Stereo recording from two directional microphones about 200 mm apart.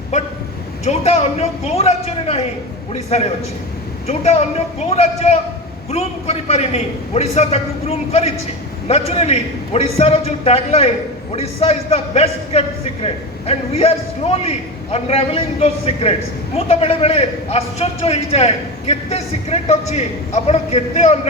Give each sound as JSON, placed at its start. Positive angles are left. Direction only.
{"t": 0.1, "sound": "a man's voice", "side_deg": 35}